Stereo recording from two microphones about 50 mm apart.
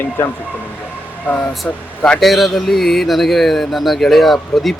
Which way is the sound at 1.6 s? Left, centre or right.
Left.